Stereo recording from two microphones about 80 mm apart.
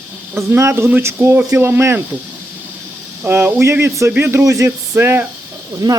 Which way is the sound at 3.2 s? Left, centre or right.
Right.